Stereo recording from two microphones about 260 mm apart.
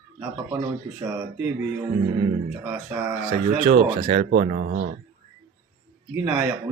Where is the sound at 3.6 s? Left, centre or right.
Right.